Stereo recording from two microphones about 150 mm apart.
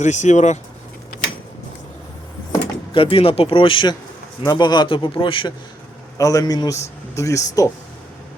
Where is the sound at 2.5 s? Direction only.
35° left (ahead or behind).